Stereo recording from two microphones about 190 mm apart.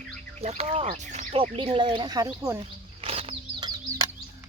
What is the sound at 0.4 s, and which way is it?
Speech, 35° right (ahead or behind).